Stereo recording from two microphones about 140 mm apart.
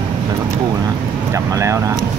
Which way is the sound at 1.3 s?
20° right (ahead or behind).